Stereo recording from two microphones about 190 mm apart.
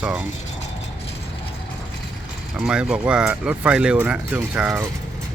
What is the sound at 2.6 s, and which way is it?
Speech, 5° right (ahead or behind).